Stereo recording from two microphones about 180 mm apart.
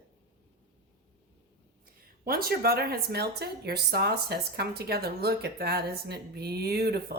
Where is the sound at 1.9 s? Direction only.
55° right (ahead or behind).